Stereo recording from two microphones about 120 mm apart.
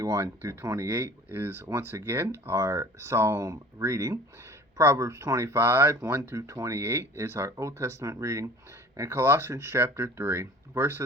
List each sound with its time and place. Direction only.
0.0 s speech: 25° right (ahead or behind)